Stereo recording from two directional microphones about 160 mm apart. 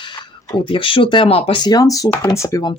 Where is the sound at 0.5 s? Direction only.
30° left (ahead or behind).